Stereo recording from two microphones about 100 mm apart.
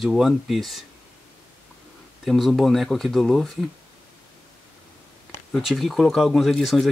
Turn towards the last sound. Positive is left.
turn(degrees=0)  # may be behind; listen again after turning